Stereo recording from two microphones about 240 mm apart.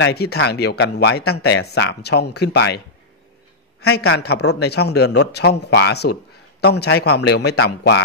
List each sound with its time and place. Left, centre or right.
0.0 s speech: left
3.8 s speech: left